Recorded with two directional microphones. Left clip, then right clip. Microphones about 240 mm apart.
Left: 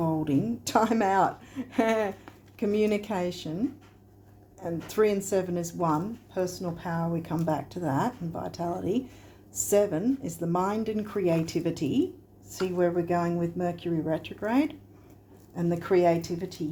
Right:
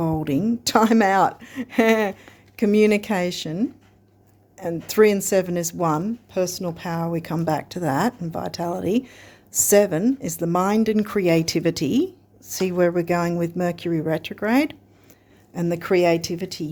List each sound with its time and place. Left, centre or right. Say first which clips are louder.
0.0 s speech: right 4 dB; right